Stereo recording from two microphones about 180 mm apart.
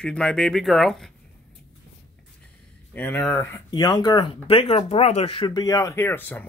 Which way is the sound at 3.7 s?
20° left (ahead or behind).